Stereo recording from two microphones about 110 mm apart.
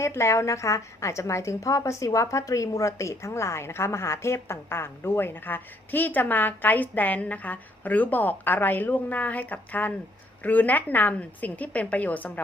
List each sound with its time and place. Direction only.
0.0 s a woman's voice: 25° left (ahead or behind)